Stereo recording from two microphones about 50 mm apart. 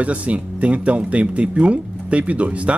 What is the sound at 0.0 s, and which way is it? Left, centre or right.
Speech, right.